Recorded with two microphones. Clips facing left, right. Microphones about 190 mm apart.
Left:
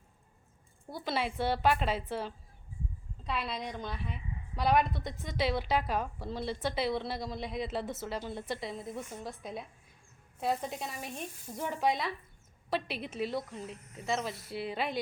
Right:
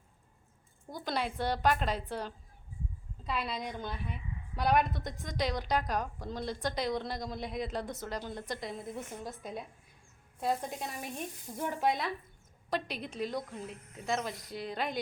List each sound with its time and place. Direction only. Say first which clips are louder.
0.9 s a woman's voice: left 1 dB; 5° left (ahead or behind)